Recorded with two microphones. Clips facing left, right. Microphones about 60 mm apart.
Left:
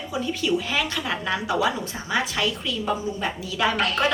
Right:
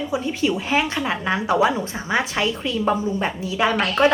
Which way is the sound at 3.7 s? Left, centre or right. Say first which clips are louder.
Right 4 dB; centre.